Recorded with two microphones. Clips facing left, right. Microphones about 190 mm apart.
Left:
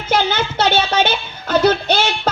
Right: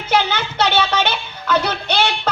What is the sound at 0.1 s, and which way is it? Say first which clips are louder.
Speech: left 1 dB; 45° left (ahead or behind).